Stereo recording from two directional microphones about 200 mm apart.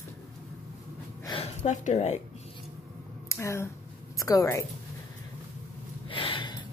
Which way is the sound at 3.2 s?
15° left (ahead or behind).